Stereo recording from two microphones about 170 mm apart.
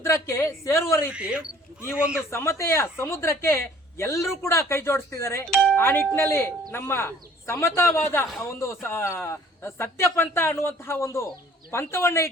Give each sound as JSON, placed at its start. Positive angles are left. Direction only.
{"t": 0.0, "sound": "speech", "side_deg": 15}
{"t": 1.1, "sound": "speech", "side_deg": -5}
{"t": 2.3, "sound": "speech", "side_deg": 15}
{"t": 5.5, "sound": "speech", "side_deg": 5}